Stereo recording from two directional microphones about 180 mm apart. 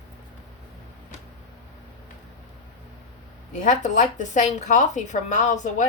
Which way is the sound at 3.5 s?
45° left (ahead or behind).